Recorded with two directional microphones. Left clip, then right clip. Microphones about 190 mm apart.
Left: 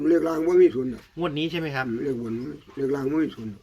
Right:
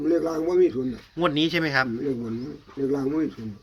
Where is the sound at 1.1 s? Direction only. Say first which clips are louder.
Right 5 dB; 10° right (ahead or behind).